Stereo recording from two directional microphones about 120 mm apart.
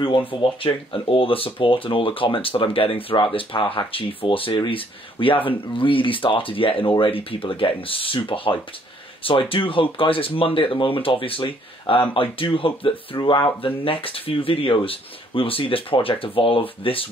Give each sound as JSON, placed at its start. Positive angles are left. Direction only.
{"t": 0.4, "sound": "speech", "side_deg": 45}